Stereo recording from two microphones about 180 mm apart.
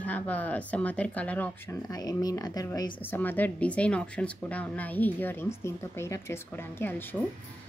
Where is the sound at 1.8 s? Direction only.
20° left (ahead or behind).